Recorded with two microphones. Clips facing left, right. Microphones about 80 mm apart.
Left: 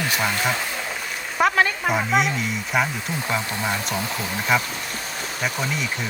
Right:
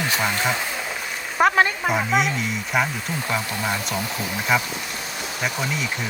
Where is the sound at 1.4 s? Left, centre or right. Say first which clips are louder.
Right 2 dB; right.